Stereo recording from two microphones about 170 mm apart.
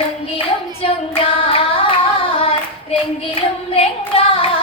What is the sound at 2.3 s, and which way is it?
Singing, 35° left (ahead or behind).